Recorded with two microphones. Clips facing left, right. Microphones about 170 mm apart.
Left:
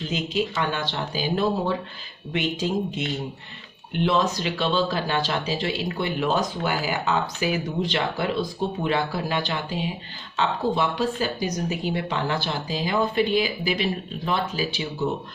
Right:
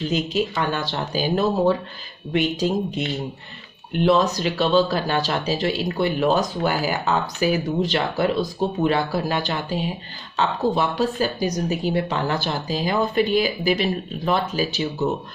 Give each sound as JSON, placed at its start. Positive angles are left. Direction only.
{"t": 0.1, "sound": "speech", "side_deg": -45}
{"t": 3.9, "sound": "speech", "side_deg": -40}